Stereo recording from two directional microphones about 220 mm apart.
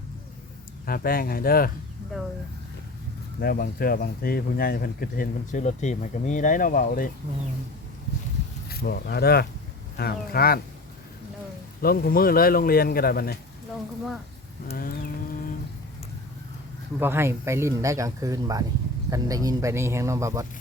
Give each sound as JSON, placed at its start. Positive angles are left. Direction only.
{"t": 0.9, "sound": "speech", "side_deg": 40}
{"t": 3.4, "sound": "speech", "side_deg": 45}
{"t": 8.7, "sound": "a man's voice", "side_deg": 45}
{"t": 11.8, "sound": "a man's voice", "side_deg": 45}
{"t": 17.0, "sound": "speech", "side_deg": -10}